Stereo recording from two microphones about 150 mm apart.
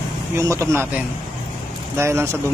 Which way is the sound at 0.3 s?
20° right (ahead or behind).